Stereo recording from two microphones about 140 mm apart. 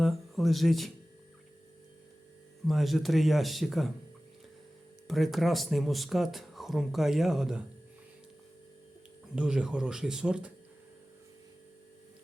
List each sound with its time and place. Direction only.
0.0 s speech: centre (ahead or behind)
2.6 s speech: centre (ahead or behind)
5.0 s speech: centre (ahead or behind)
9.3 s speech: 5° right (ahead or behind)